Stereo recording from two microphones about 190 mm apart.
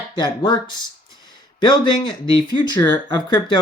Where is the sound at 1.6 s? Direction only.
25° left (ahead or behind).